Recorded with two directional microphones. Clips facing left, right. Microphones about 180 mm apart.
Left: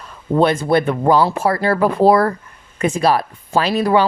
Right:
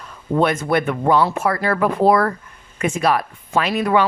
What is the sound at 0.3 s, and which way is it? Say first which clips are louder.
Speech: left 3 dB; 30° left (ahead or behind).